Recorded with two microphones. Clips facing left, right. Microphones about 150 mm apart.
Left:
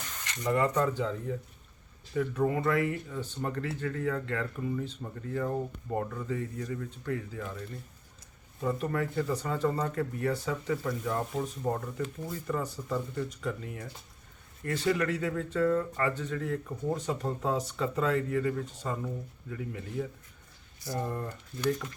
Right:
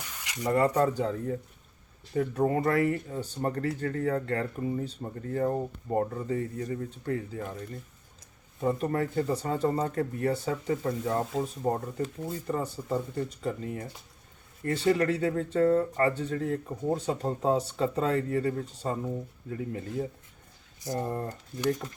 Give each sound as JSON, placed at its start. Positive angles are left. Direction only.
{"t": 0.0, "sound": "a sound", "side_deg": -10}
{"t": 0.4, "sound": "speech", "side_deg": -35}
{"t": 8.6, "sound": "speech", "side_deg": -35}